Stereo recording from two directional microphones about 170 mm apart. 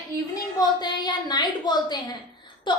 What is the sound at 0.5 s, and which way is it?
A woman's voice, 25° left (ahead or behind).